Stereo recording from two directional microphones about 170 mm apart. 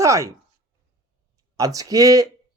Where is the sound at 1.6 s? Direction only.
20° right (ahead or behind).